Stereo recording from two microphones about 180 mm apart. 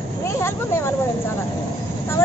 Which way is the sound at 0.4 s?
15° left (ahead or behind).